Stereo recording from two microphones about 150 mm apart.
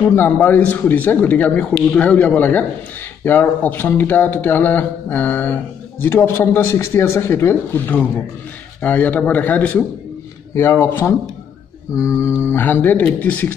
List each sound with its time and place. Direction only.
0.1 s speech: 15° left (ahead or behind)
11.9 s mantra: 20° left (ahead or behind)
12.4 s speech: 15° left (ahead or behind)